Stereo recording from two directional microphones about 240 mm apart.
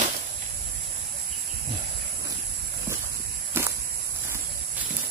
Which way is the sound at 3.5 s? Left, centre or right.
Centre.